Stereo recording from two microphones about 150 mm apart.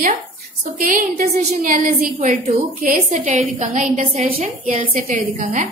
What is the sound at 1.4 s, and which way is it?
Speech, 50° right (ahead or behind).